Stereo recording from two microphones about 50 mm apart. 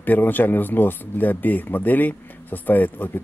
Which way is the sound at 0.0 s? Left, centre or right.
Left.